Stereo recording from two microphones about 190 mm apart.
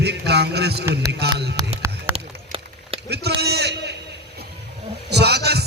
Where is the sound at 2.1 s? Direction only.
30° right (ahead or behind).